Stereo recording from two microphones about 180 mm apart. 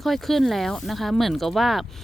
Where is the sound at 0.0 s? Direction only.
Centre (ahead or behind).